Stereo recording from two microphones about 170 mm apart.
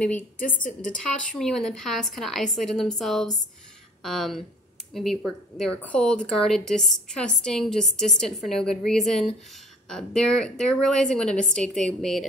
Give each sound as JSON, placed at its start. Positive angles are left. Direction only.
{"t": 0.0, "sound": "a woman's voice", "side_deg": 10}